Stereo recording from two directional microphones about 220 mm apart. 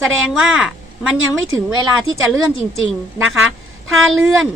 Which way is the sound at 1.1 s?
65° right (ahead or behind).